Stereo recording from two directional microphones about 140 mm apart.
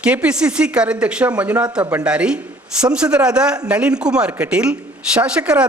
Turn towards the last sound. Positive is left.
turn(degrees=-10)  # may be behind; listen again after turning